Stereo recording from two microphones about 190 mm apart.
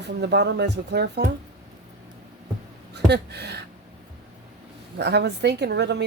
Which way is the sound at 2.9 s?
60° right (ahead or behind).